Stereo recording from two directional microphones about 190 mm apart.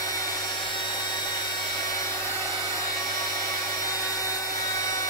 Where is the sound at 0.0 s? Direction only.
20° left (ahead or behind).